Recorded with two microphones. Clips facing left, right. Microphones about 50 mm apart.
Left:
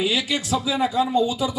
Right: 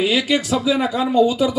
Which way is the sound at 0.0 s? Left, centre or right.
Right.